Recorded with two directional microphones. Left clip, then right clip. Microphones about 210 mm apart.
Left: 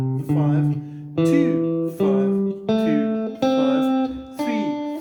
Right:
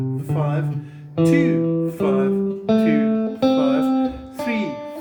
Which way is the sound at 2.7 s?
50° left (ahead or behind).